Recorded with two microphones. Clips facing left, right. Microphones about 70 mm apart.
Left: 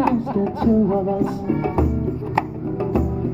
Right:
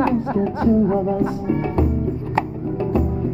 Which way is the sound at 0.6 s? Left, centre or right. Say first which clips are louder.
Even; centre.